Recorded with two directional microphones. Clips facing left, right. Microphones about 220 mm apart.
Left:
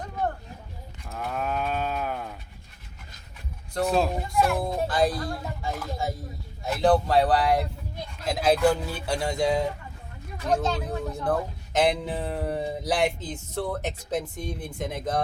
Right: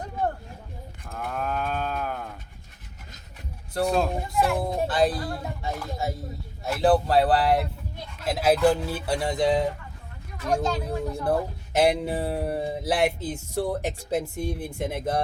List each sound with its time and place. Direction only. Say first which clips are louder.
1.0 s sheep: even; 5° left (ahead or behind)
3.8 s speech: even; 5° left (ahead or behind)
4.3 s speech: even; 20° right (ahead or behind)
4.6 s speech: right 1 dB; 5° right (ahead or behind)
10.4 s speech: even; 25° left (ahead or behind)
10.8 s speech: right 2 dB; 5° right (ahead or behind)